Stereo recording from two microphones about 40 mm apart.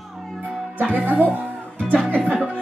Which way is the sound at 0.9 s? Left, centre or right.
Right.